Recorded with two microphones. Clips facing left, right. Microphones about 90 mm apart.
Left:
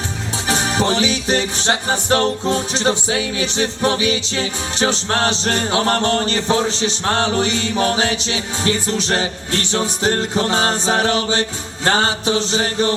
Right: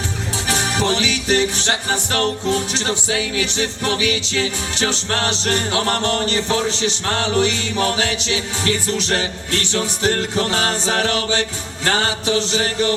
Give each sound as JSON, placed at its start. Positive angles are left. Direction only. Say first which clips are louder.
{"t": 0.4, "sound": "music", "louder": "left 2 dB", "side_deg": 25}